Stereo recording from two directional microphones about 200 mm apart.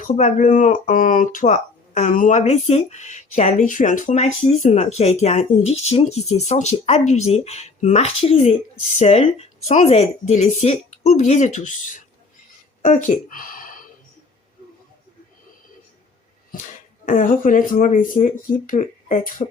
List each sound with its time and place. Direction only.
0.1 s speech: 40° left (ahead or behind)
17.1 s speech: 40° left (ahead or behind)